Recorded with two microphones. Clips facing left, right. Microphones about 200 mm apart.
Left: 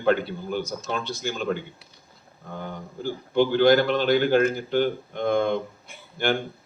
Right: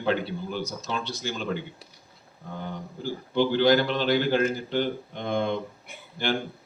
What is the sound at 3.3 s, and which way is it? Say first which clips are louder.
A man's voice: left 3 dB; 50° left (ahead or behind).